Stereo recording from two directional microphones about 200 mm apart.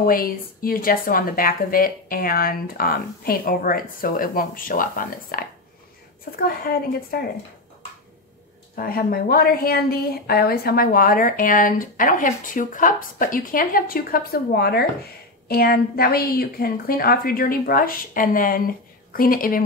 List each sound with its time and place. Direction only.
0.0 s a woman's voice: 45° left (ahead or behind)
8.7 s a woman's voice: 50° left (ahead or behind)